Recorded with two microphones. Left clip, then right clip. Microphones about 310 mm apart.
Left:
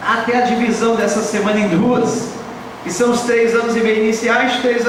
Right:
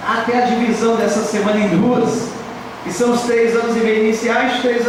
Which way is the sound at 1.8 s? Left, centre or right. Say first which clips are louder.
Even; right.